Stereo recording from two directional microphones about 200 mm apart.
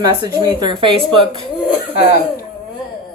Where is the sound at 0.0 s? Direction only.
20° right (ahead or behind).